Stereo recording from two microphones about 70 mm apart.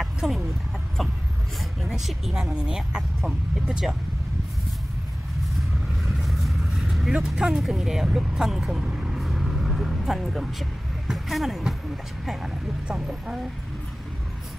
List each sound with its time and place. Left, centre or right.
0.0 s chicken: centre
1.6 s speech: centre
6.2 s vehicle: centre
7.2 s speech: centre